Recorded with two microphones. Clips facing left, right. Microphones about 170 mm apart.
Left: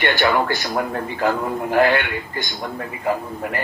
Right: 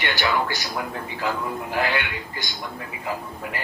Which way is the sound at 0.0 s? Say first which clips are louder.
Left 5 dB; 55° left (ahead or behind).